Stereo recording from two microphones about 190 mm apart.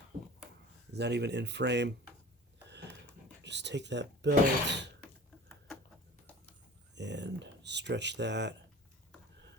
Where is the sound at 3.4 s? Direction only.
65° right (ahead or behind).